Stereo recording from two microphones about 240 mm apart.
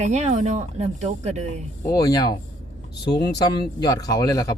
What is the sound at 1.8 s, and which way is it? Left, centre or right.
Speech, centre.